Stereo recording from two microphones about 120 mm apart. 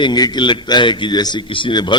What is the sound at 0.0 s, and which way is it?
A man's voice, 35° left (ahead or behind).